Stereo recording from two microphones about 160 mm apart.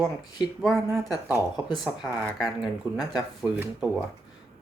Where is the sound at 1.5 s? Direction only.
30° left (ahead or behind).